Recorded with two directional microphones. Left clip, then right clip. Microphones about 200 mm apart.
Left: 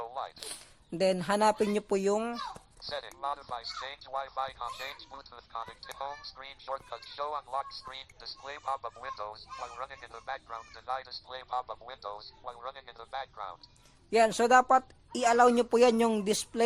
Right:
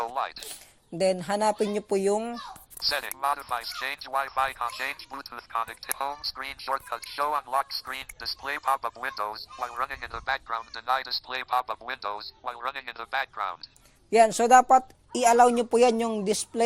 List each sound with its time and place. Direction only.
0.0 s zipper: 35° right (ahead or behind)
0.9 s speech: 5° right (ahead or behind)
2.9 s speech: 35° right (ahead or behind)
14.1 s speech: 10° right (ahead or behind)